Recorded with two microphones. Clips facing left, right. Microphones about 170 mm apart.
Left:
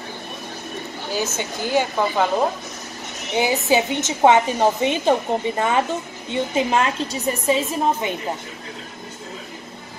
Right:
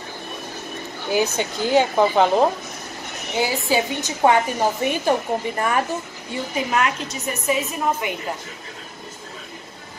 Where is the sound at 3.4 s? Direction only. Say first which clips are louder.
Left 2 dB; 20° left (ahead or behind).